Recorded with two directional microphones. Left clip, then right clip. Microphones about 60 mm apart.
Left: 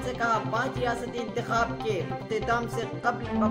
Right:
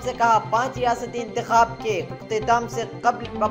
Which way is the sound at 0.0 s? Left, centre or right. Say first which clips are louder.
Right 8 dB; centre.